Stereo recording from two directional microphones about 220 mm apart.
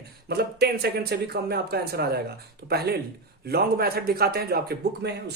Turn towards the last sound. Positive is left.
turn(degrees=-45)  # may be behind; listen again after turning